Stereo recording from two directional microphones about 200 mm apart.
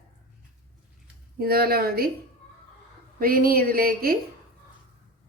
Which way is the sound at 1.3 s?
50° right (ahead or behind).